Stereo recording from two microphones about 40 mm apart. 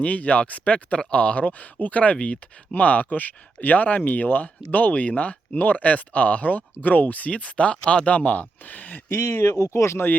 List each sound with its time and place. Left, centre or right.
0.0 s speech: left
9.0 s speech: left